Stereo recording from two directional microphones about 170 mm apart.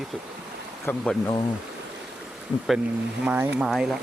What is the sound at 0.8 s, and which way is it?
Speech, 5° left (ahead or behind).